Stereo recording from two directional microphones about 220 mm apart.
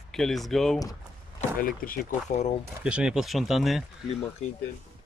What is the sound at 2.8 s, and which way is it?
Speech, 5° right (ahead or behind).